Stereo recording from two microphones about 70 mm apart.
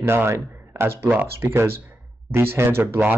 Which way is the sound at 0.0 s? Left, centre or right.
Right.